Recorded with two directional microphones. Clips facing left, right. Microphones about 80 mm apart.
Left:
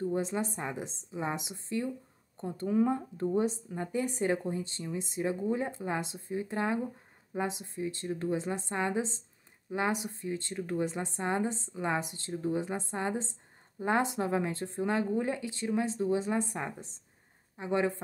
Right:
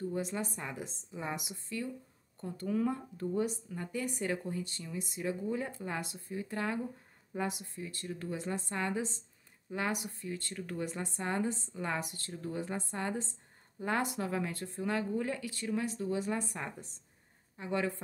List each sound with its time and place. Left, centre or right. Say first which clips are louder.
0.0 s speech: left 4 dB; left